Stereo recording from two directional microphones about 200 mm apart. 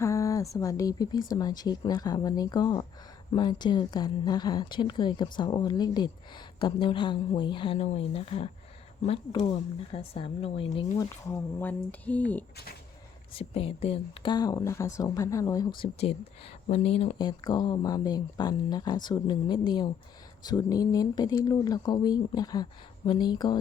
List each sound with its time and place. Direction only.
0.0 s a sound: 15° left (ahead or behind)
0.5 s a woman's voice: 15° left (ahead or behind)
11.3 s speech: 15° left (ahead or behind)
13.3 s a woman's voice: 30° left (ahead or behind)